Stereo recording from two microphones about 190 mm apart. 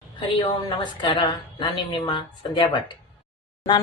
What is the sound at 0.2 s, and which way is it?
A woman's voice, 25° left (ahead or behind).